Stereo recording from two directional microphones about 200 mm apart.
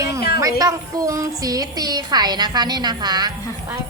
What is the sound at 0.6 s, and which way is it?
A woman's voice, 15° right (ahead or behind).